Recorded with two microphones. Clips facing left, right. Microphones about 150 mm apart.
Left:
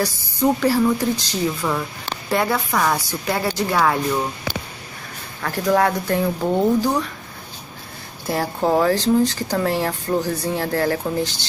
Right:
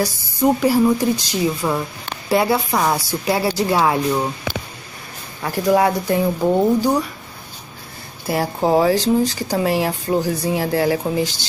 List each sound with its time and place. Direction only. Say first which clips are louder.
0.0 s a woman's voice: right 2 dB; 15° right (ahead or behind)
5.4 s a woman's voice: right 2 dB; 10° right (ahead or behind)
8.3 s a woman's voice: right 2 dB; 10° right (ahead or behind)